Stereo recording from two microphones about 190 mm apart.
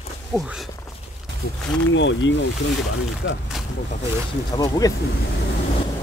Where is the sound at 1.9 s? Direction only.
75° left (ahead or behind).